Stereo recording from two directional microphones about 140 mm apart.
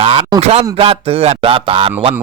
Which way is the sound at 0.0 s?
40° right (ahead or behind).